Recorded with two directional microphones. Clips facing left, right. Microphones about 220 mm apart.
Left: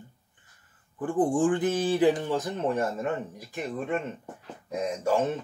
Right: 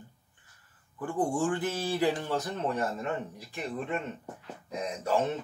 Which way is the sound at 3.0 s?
45° left (ahead or behind).